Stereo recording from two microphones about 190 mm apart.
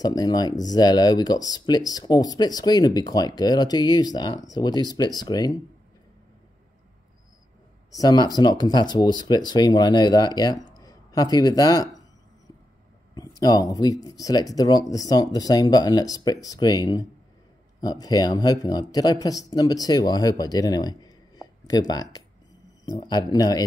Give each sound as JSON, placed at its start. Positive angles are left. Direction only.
{"t": 0.0, "sound": "speech", "side_deg": 20}
{"t": 7.9, "sound": "speech", "side_deg": 20}
{"t": 13.1, "sound": "speech", "side_deg": 20}